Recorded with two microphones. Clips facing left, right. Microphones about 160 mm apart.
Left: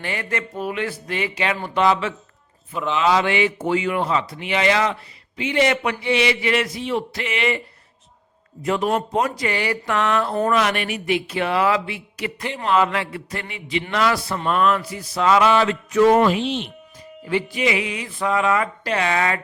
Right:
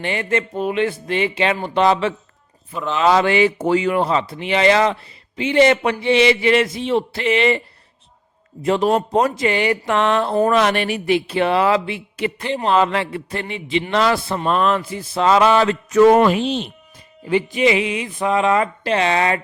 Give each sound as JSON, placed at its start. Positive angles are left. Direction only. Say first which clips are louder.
{"t": 0.0, "sound": "speech", "louder": "right 6 dB", "side_deg": -25}
{"t": 2.7, "sound": "speech", "louder": "even", "side_deg": 0}
{"t": 3.0, "sound": "speech", "louder": "right 4 dB", "side_deg": -40}
{"t": 8.6, "sound": "speech", "louder": "right 4 dB", "side_deg": -30}
{"t": 16.4, "sound": "speech", "louder": "right 3 dB", "side_deg": -40}
{"t": 17.2, "sound": "speech", "louder": "right 5 dB", "side_deg": -20}